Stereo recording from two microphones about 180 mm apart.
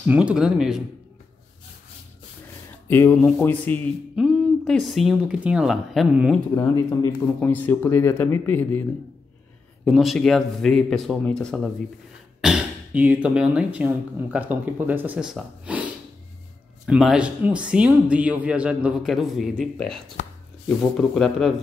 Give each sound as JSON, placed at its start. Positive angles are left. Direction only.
{"t": 0.0, "sound": "speech", "side_deg": -10}
{"t": 2.9, "sound": "speech", "side_deg": 10}
{"t": 4.1, "sound": "speech", "side_deg": -5}
{"t": 6.5, "sound": "speech", "side_deg": 20}
{"t": 9.8, "sound": "speech", "side_deg": 0}